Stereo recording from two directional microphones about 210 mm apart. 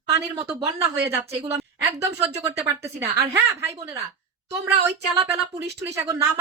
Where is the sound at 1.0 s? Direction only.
10° right (ahead or behind).